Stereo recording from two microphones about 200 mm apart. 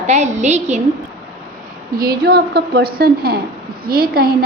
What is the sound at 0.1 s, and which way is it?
Speech, 35° right (ahead or behind).